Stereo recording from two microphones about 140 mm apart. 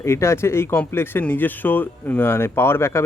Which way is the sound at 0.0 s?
20° left (ahead or behind).